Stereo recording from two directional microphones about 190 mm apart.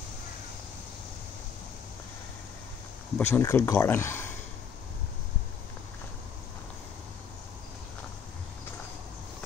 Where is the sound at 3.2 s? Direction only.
15° left (ahead or behind).